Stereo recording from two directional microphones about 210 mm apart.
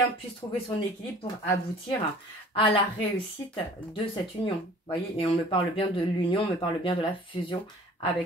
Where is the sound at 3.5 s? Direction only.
25° left (ahead or behind).